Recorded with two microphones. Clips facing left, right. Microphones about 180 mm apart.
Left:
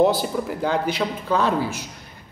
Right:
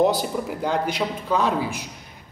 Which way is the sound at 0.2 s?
5° left (ahead or behind).